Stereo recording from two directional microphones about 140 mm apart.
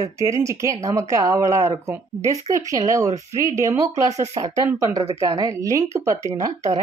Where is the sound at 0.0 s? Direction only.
20° right (ahead or behind).